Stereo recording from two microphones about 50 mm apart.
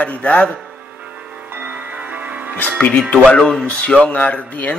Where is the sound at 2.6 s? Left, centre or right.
Left.